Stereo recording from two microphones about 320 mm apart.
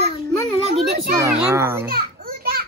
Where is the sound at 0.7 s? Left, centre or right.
Centre.